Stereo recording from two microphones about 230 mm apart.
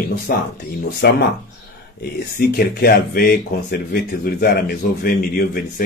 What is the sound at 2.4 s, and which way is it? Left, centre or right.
A man's voice, left.